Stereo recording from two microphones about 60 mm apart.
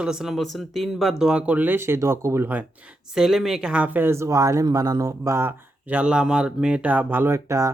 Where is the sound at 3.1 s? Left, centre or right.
Centre.